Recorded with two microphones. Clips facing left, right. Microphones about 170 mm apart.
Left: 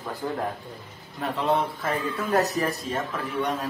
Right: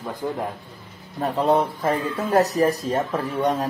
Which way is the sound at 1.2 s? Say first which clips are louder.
Right 5 dB; 40° right (ahead or behind).